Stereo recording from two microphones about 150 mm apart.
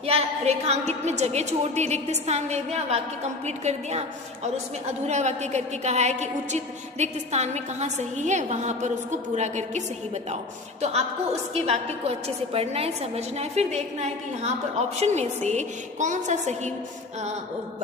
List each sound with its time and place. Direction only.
0.0 s a woman's voice: 45° right (ahead or behind)